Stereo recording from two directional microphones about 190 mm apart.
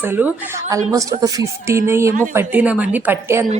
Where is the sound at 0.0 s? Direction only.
10° right (ahead or behind).